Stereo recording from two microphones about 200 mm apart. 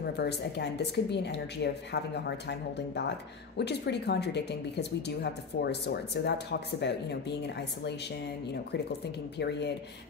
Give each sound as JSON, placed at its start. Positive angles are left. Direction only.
{"t": 0.0, "sound": "a woman's voice", "side_deg": 55}
{"t": 9.0, "sound": "a woman's voice", "side_deg": 55}